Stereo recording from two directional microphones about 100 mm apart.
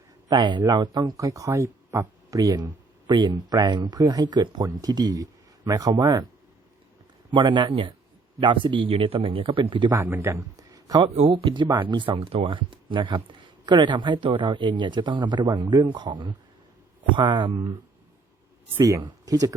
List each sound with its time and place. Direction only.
0.3 s speech: 50° right (ahead or behind)
7.3 s speech: 50° right (ahead or behind)
9.9 s a man's voice: 20° right (ahead or behind)
10.3 s a sound: 35° right (ahead or behind)
11.0 s speech: 90° right
11.3 s speech: 60° right (ahead or behind)
18.8 s speech: 30° right (ahead or behind)